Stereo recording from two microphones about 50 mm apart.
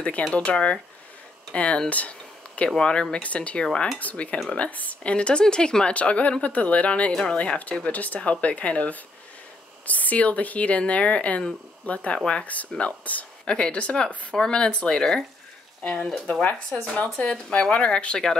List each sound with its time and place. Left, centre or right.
0.3 s speech: left
1.9 s a sound: left
2.8 s speech: centre
4.0 s speech: left
5.9 s speech: left
14.0 s speech: centre